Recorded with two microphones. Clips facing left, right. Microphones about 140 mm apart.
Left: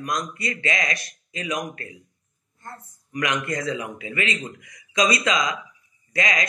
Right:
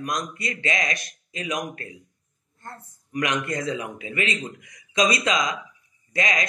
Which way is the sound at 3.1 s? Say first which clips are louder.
Even; 25° right (ahead or behind).